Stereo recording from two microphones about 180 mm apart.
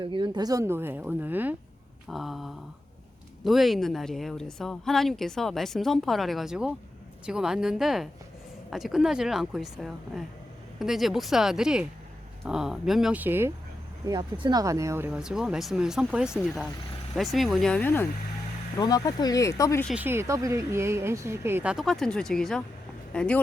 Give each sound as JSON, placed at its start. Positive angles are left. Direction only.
{"t": 0.0, "sound": "a woman's voice", "side_deg": -25}
{"t": 14.0, "sound": "a woman's voice", "side_deg": -25}
{"t": 18.8, "sound": "speech", "side_deg": 20}
{"t": 20.0, "sound": "a woman's voice", "side_deg": -15}